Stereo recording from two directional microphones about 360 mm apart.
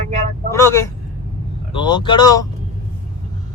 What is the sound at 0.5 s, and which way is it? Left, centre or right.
Speech, centre.